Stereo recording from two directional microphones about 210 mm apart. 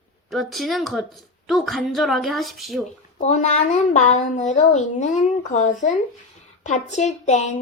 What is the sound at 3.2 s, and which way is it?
Speech, 35° left (ahead or behind).